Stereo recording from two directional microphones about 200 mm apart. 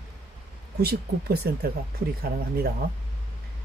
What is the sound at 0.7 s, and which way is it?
Speech, 50° right (ahead or behind).